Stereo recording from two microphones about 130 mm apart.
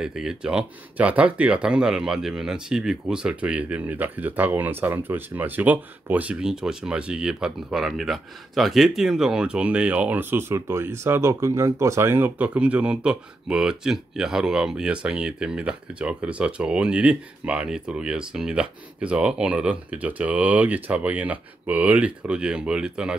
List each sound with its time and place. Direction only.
0.0 s speech: 5° right (ahead or behind)